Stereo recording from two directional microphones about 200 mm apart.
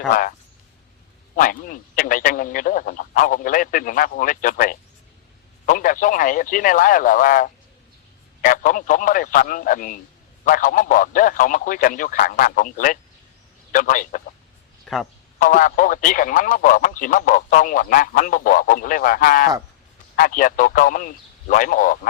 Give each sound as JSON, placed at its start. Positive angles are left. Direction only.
{"t": 0.1, "sound": "speech", "side_deg": 45}
{"t": 1.4, "sound": "speech", "side_deg": 45}
{"t": 14.9, "sound": "speech", "side_deg": 0}
{"t": 15.4, "sound": "speech", "side_deg": 40}